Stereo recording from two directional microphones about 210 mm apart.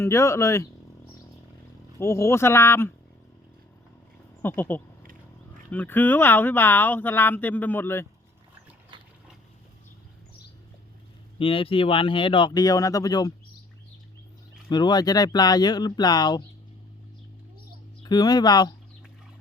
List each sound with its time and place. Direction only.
0.0 s speech: 15° left (ahead or behind)
2.0 s speech: 10° left (ahead or behind)
4.4 s speech: 10° left (ahead or behind)
11.3 s speech: 25° left (ahead or behind)
14.7 s speech: 20° left (ahead or behind)
18.0 s speech: 20° left (ahead or behind)